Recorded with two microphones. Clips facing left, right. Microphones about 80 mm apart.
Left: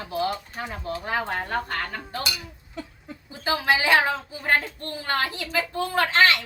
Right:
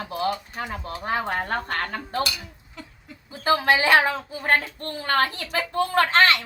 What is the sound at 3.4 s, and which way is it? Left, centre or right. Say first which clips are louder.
A woman's voice: right 3 dB; right.